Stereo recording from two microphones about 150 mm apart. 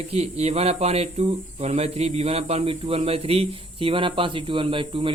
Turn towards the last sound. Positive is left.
turn(degrees=-35)  # may be behind; listen again after turning